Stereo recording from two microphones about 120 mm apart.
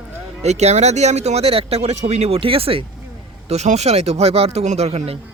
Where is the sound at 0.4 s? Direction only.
65° right (ahead or behind); by 2.8 s 50° right (ahead or behind).